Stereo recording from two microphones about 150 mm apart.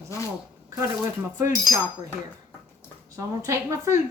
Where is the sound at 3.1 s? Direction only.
20° right (ahead or behind).